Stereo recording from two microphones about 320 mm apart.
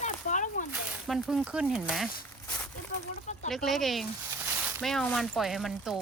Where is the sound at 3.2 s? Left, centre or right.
Left.